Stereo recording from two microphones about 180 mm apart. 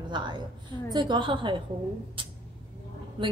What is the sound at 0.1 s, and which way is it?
A woman's voice, 25° right (ahead or behind).